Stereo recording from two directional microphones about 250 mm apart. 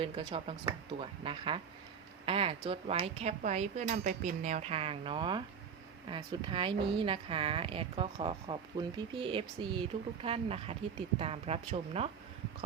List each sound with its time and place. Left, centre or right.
0.0 s speech: right